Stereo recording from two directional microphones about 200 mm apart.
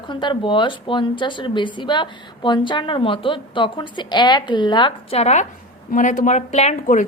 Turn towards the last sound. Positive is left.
turn(degrees=35)  # may be behind; listen again after turning